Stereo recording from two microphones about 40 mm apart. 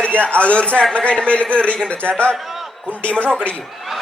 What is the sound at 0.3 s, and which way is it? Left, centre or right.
A man's voice, left.